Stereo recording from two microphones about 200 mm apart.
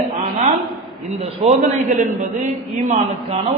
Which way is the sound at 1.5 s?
35° right (ahead or behind).